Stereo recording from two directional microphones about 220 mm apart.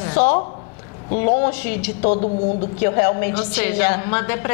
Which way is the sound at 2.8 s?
15° left (ahead or behind).